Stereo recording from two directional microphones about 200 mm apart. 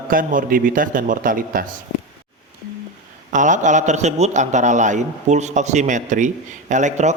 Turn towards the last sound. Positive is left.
turn(degrees=-35)  # may be behind; listen again after turning